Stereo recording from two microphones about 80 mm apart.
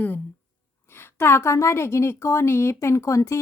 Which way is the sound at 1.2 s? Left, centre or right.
Left.